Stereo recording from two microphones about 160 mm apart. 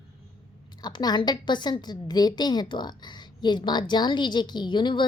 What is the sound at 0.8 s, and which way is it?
A woman's voice, 25° left (ahead or behind).